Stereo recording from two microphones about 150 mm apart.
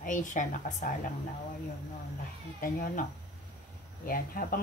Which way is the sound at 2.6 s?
65° left (ahead or behind).